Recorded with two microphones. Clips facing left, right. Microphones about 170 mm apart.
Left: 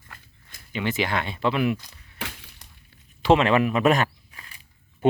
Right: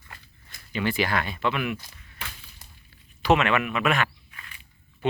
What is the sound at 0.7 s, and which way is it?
Speech, 20° left (ahead or behind).